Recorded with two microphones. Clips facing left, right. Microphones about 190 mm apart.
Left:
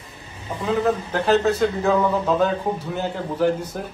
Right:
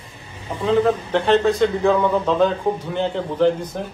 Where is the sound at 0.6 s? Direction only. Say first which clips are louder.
Right 4 dB; 5° left (ahead or behind).